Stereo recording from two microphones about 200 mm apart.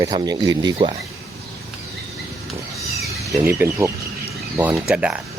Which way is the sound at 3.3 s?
15° right (ahead or behind).